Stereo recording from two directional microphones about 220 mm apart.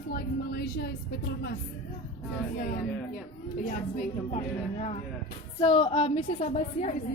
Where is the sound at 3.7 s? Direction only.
30° left (ahead or behind).